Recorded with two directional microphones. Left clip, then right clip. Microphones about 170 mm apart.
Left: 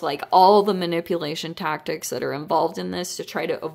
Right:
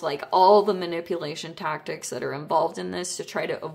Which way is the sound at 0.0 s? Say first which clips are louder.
Left 3 dB; 40° left (ahead or behind).